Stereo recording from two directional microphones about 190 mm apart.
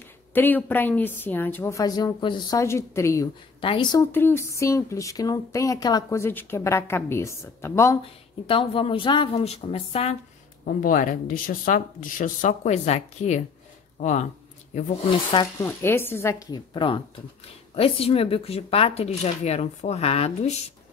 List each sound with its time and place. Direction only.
0.3 s a woman's voice: 10° left (ahead or behind)
4.1 s speech: 10° left (ahead or behind)
8.0 s a woman's voice: 30° left (ahead or behind)
10.6 s speech: 45° left (ahead or behind)
14.7 s speech: 40° left (ahead or behind)
15.3 s speech: 15° left (ahead or behind); by 20.5 s 35° left (ahead or behind)